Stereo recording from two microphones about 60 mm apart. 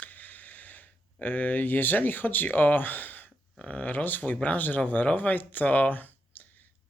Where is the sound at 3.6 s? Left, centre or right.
Left.